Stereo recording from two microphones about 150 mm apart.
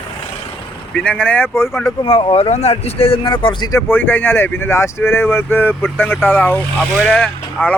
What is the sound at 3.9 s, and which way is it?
Speech, 10° left (ahead or behind).